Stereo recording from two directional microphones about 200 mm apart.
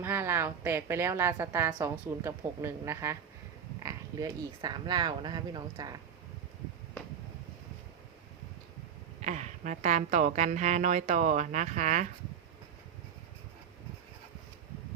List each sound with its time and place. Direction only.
0.0 s a woman's voice: 10° right (ahead or behind)
9.2 s a woman's voice: 35° right (ahead or behind)